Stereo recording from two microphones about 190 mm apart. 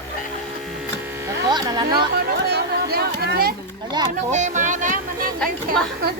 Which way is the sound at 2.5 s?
55° right (ahead or behind).